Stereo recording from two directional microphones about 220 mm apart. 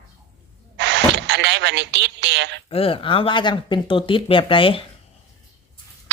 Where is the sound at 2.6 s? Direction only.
25° left (ahead or behind).